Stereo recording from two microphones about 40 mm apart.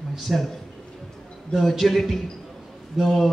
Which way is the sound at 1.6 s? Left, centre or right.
Centre.